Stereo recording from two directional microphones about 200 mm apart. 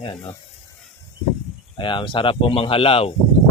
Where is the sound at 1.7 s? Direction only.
25° left (ahead or behind).